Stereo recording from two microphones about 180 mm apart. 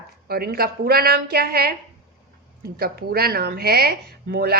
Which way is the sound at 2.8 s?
60° right (ahead or behind).